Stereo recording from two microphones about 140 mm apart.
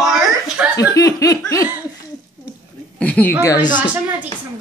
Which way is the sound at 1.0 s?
25° left (ahead or behind).